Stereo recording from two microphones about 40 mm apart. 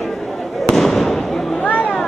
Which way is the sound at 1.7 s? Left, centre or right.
Left.